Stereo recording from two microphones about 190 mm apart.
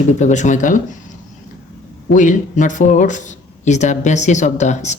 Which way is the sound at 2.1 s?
40° left (ahead or behind).